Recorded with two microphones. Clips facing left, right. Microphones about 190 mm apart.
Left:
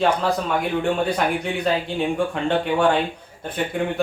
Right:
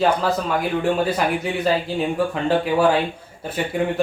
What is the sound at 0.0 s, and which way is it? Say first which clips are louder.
Speech: right 1 dB; centre (ahead or behind).